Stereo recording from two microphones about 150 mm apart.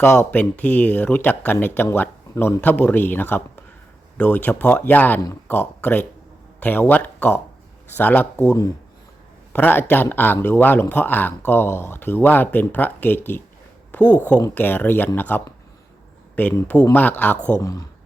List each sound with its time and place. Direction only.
0.0 s speech: 10° left (ahead or behind)
17.6 s speech: 25° left (ahead or behind)